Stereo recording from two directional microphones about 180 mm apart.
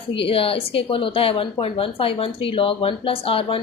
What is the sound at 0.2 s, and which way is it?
A woman's voice, 30° left (ahead or behind).